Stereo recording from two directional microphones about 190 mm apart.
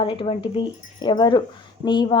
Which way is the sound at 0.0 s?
30° left (ahead or behind).